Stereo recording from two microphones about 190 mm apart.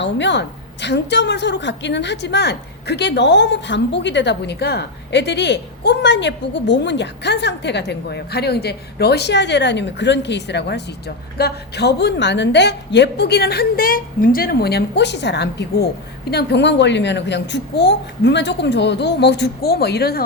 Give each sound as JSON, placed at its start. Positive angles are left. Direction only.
{"t": 0.0, "sound": "a woman's voice", "side_deg": 70}